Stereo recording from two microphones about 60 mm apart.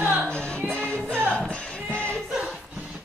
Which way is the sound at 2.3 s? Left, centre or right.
Centre.